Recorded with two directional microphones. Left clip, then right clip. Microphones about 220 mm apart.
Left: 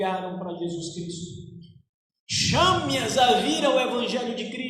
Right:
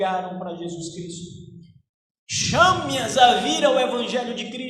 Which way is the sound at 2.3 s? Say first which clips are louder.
Right 3 dB; 25° right (ahead or behind).